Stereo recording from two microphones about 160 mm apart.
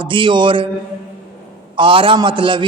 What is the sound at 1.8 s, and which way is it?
Speech, 30° right (ahead or behind).